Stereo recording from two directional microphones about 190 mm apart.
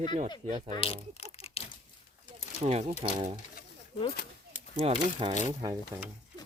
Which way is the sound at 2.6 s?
35° right (ahead or behind).